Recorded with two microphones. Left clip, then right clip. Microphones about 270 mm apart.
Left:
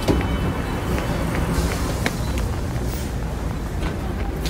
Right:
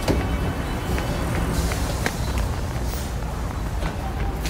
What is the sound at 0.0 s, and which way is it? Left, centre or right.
Vehicle, centre.